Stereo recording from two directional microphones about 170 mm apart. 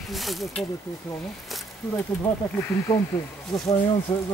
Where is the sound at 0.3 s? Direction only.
Centre (ahead or behind).